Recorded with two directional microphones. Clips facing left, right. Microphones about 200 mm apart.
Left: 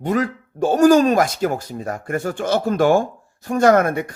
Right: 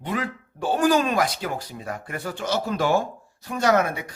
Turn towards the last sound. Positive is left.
turn(degrees=50)  # may be behind; listen again after turning